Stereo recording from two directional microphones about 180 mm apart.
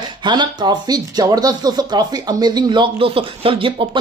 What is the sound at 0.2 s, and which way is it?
Speech, 25° right (ahead or behind).